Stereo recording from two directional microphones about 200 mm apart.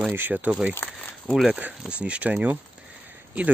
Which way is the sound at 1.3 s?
Centre (ahead or behind).